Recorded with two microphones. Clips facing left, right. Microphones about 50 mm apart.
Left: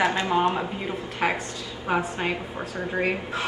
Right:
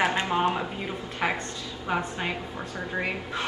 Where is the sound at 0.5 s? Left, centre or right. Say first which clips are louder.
Left 2 dB; centre.